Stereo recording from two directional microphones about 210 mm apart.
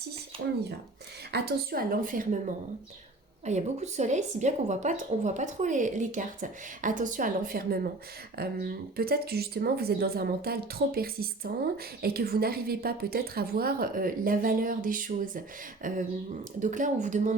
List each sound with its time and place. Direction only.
0.4 s speech: 50° right (ahead or behind)
3.4 s speech: 35° right (ahead or behind)